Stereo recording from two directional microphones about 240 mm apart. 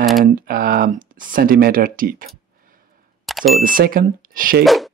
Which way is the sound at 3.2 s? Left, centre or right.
Centre.